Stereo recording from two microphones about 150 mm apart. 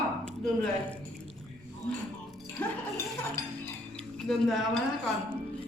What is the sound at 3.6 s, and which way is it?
Cutlery, 5° left (ahead or behind).